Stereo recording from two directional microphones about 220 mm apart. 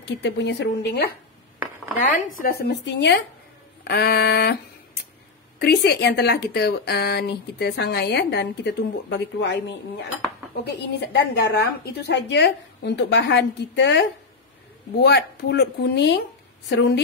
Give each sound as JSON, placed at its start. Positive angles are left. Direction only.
{"t": 0.0, "sound": "a woman's voice", "side_deg": 50}
{"t": 2.0, "sound": "a woman's voice", "side_deg": 40}
{"t": 5.6, "sound": "a woman's voice", "side_deg": 50}